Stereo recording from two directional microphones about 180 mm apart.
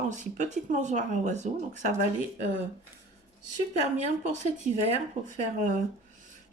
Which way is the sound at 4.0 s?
40° right (ahead or behind).